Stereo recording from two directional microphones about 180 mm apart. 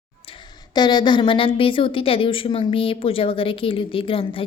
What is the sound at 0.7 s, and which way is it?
A woman's voice, 25° left (ahead or behind).